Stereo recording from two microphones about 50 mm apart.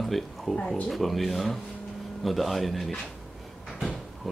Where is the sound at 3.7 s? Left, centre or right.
Centre.